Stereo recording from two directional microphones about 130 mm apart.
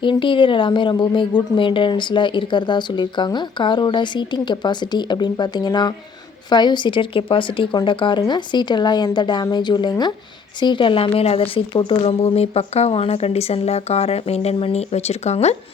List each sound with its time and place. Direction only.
0.0 s a woman's voice: 40° left (ahead or behind); by 15.5 s 55° left (ahead or behind)